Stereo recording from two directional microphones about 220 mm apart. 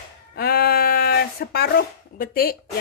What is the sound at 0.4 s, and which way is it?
Speech, 45° left (ahead or behind).